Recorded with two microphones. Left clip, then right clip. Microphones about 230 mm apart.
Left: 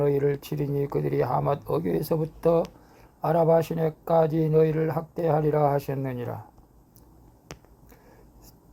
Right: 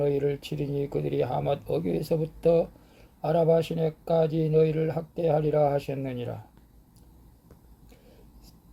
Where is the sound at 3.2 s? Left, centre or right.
Centre.